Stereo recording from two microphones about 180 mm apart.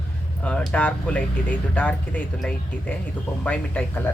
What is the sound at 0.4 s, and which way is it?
Speech, 5° left (ahead or behind).